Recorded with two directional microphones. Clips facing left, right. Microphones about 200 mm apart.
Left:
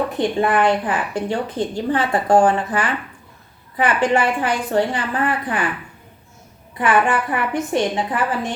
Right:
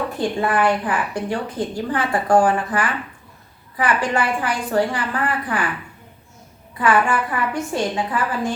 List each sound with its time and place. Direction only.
0.2 s a woman's voice: 20° left (ahead or behind)
6.7 s a woman's voice: 20° left (ahead or behind)